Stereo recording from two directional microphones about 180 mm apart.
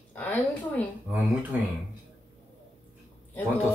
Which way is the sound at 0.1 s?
10° left (ahead or behind).